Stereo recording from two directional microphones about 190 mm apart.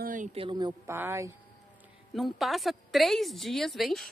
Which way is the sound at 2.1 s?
Centre (ahead or behind).